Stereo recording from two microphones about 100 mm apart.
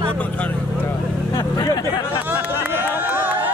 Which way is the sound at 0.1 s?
15° left (ahead or behind).